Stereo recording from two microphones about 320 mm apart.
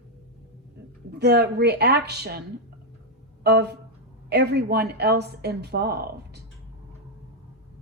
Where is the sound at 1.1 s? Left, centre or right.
Right.